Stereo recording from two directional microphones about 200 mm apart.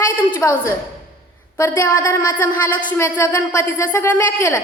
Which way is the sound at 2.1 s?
10° left (ahead or behind).